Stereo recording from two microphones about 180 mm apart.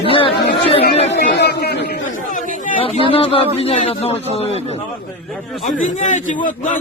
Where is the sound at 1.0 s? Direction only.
65° left (ahead or behind).